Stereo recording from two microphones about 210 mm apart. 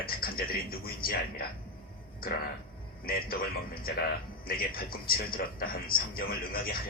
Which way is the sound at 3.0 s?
45° left (ahead or behind).